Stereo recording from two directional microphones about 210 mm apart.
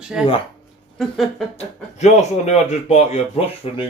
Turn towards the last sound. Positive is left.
turn(degrees=30)  # may be behind; listen again after turning